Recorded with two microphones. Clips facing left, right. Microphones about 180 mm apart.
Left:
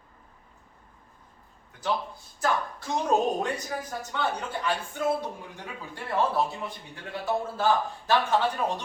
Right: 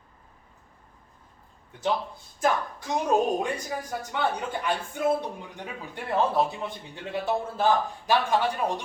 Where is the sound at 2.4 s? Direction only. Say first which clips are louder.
Right 2 dB; 15° right (ahead or behind).